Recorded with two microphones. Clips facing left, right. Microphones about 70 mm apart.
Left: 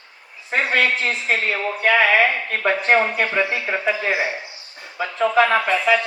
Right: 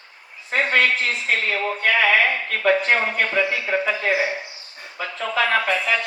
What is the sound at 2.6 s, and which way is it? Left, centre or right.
Speech, left.